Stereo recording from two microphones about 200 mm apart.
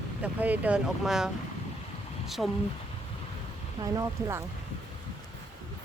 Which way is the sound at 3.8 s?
15° right (ahead or behind).